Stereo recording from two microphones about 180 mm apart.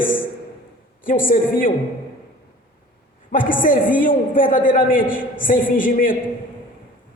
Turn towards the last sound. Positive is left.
turn(degrees=50)  # may be behind; listen again after turning